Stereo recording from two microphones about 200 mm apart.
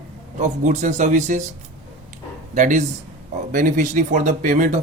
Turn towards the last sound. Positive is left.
turn(degrees=-40)  # may be behind; listen again after turning